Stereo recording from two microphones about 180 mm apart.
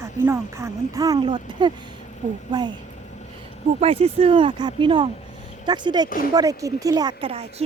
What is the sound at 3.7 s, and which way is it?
Speech, 35° right (ahead or behind).